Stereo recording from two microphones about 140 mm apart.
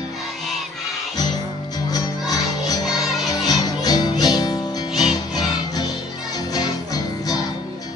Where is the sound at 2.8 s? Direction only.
5° right (ahead or behind).